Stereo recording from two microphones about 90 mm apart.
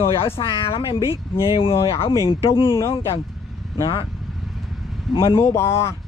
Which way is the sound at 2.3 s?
80° left.